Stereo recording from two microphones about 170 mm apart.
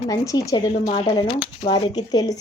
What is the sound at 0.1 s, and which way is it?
A woman's voice, 20° left (ahead or behind).